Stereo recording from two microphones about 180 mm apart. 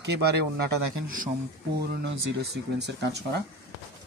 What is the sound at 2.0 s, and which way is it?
Speech, 70° right (ahead or behind).